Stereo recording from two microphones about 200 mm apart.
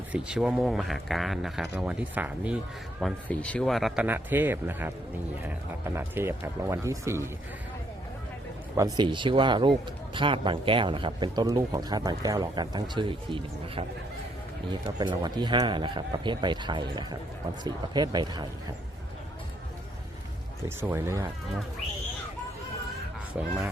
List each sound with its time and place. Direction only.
0.1 s speech: 5° right (ahead or behind)
3.0 s speech: 5° left (ahead or behind); by 7.3 s 15° right (ahead or behind)
8.7 s a man's voice: 20° right (ahead or behind)
14.9 s a man's voice: 20° right (ahead or behind)
20.7 s speech: 10° right (ahead or behind)